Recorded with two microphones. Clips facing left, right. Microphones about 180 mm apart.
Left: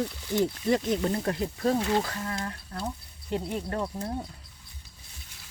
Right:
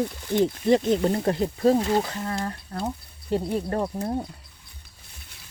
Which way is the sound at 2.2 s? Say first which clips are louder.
Right 4 dB; 35° right (ahead or behind).